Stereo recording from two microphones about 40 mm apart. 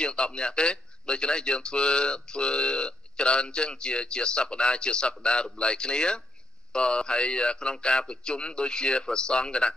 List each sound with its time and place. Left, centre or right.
0.0 s speech: left